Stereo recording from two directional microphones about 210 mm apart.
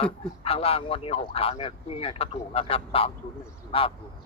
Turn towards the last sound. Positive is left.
turn(degrees=25)  # may be behind; listen again after turning